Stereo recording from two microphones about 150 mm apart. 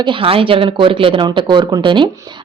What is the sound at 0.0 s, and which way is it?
A woman's voice, 35° right (ahead or behind).